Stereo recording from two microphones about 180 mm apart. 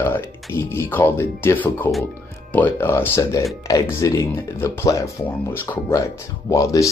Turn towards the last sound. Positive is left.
turn(degrees=20)  # may be behind; listen again after turning